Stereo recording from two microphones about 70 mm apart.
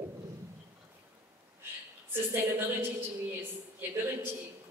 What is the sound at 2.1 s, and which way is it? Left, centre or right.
A woman's voice, right.